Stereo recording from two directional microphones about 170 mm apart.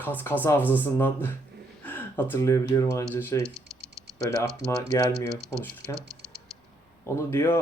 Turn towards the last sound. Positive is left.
turn(degrees=15)  # may be behind; listen again after turning